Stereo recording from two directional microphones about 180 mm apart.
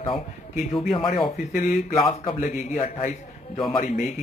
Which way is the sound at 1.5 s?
50° left (ahead or behind).